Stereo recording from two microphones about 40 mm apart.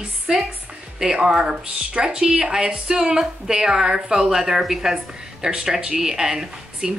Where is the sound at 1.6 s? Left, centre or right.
Right.